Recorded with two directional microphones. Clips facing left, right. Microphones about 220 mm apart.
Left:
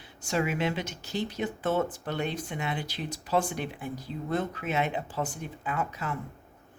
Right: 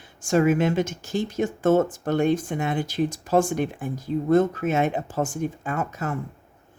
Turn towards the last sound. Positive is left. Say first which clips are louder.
# right 5 dB
turn(degrees=-45)  # may be behind; listen again after turning